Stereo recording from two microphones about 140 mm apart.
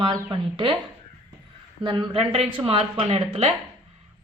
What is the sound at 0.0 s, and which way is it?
Speech, 35° right (ahead or behind).